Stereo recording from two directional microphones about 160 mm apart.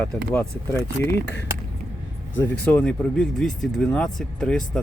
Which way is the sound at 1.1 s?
90° left.